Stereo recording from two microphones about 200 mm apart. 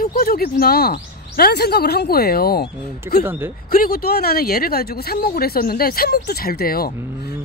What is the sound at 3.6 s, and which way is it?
Speech, 45° left (ahead or behind).